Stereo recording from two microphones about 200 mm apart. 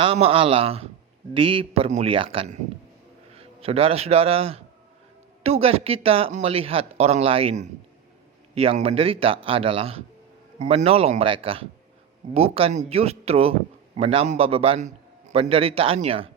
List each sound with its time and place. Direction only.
0.0 s a man's voice: 25° right (ahead or behind)